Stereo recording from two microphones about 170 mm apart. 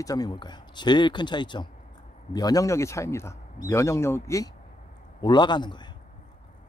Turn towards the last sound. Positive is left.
turn(degrees=25)  # may be behind; listen again after turning